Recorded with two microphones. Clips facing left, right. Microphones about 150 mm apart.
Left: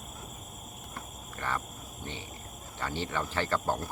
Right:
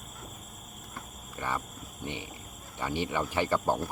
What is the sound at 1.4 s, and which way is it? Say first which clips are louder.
Speech: right 1 dB; 15° right (ahead or behind).